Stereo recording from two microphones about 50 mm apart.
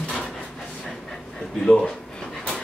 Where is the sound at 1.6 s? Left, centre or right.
Centre.